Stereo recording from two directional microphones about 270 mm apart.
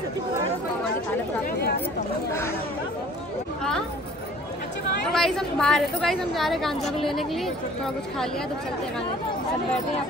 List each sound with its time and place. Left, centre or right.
1.4 s speech: left
5.1 s a woman's voice: centre